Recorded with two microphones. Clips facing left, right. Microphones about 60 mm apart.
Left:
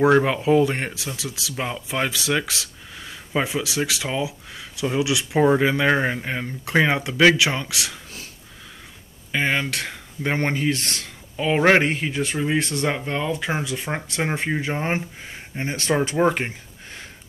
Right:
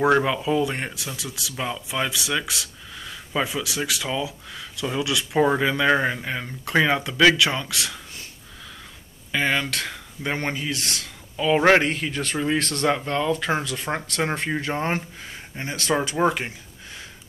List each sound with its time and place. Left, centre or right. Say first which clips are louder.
0.2 s speech: left 4 dB; left
1.0 s speech: left 2 dB; right
1.6 s speech: left 1 dB; left
3.3 s speech: left 2 dB; left
9.3 s speech: left 1 dB; left
16.3 s a sound: left 2 dB; left